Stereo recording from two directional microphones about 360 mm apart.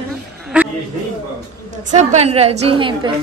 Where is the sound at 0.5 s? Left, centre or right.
Centre.